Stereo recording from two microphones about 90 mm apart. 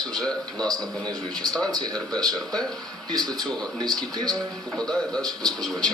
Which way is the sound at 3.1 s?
45° right (ahead or behind).